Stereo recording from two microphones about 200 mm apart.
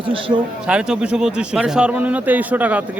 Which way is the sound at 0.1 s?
25° right (ahead or behind).